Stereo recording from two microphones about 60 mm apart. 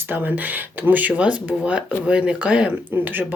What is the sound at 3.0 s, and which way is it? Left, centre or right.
Speech, right.